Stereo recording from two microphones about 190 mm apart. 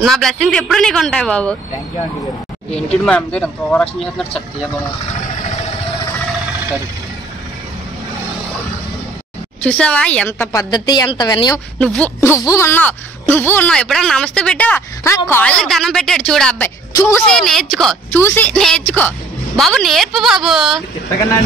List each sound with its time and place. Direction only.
0.0 s a woman's voice: centre (ahead or behind)
2.9 s speech: 5° left (ahead or behind)
9.6 s speech: 5° left (ahead or behind)
11.8 s a woman's voice: 5° left (ahead or behind)
17.3 s a woman's voice: 5° left (ahead or behind)